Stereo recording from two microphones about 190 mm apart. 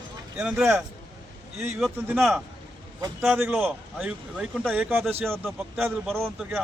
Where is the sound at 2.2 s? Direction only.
Centre (ahead or behind).